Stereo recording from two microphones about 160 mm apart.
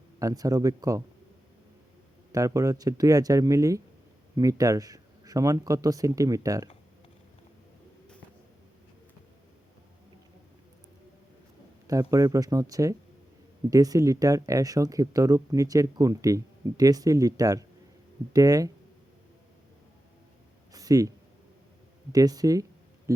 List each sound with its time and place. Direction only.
0.2 s speech: 20° right (ahead or behind)
2.3 s speech: 20° right (ahead or behind)
11.9 s speech: 20° right (ahead or behind)
20.7 s speech: 20° right (ahead or behind)
22.1 s speech: 25° right (ahead or behind)
23.1 s music: 20° right (ahead or behind)